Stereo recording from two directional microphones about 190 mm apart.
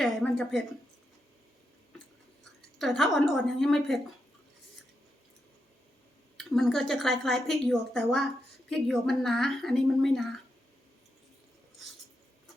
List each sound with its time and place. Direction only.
0.0 s speech: centre (ahead or behind)
2.4 s a woman's voice: centre (ahead or behind)
6.3 s a woman's voice: centre (ahead or behind)